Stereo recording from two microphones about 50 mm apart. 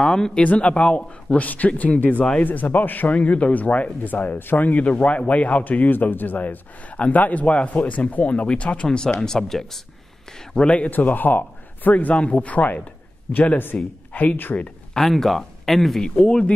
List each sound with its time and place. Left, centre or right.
0.0 s a man's voice: centre
8.8 s speech: centre
10.7 s speech: left
15.0 s speech: centre
16.0 s a man's voice: centre